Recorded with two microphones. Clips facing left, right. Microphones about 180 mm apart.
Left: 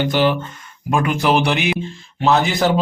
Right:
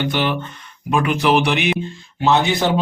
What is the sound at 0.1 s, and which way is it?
Speech, 40° left (ahead or behind).